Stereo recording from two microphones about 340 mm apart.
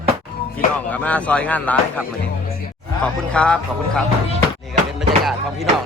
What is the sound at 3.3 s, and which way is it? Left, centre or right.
Speech, centre.